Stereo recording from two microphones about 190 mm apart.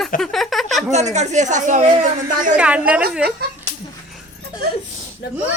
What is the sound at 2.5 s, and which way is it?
Speech, 5° right (ahead or behind).